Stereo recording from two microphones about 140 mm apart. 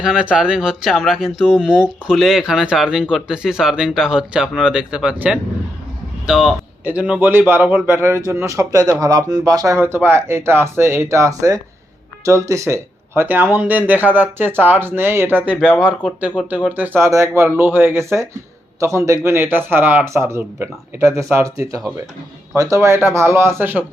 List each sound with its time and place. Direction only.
0.0 s a man's voice: 5° right (ahead or behind)